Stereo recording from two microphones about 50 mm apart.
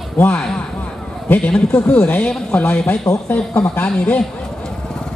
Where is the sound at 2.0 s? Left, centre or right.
Left.